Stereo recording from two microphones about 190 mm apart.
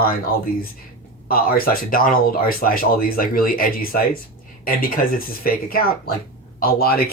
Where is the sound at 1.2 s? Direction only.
50° left (ahead or behind).